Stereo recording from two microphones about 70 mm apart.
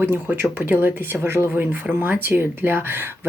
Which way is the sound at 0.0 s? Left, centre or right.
Right.